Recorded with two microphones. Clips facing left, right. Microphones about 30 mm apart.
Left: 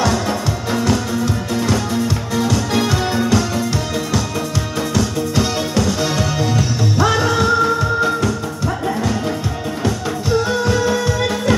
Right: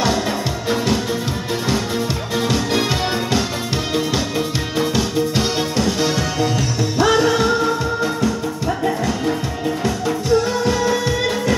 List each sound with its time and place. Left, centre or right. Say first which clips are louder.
2.8 s music: left 2 dB; right
4.7 s music: right 2 dB; right
5.9 s music: even; centre
9.8 s music: right 1 dB; centre
11.1 s music: left 1 dB; centre